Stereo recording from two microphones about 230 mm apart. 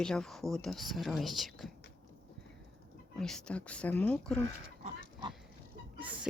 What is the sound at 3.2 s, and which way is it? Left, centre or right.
Speech, centre.